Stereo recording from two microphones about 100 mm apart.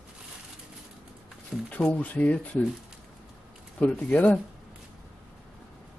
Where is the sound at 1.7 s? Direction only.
15° left (ahead or behind).